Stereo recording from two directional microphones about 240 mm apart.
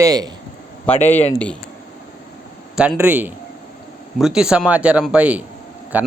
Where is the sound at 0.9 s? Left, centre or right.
Left.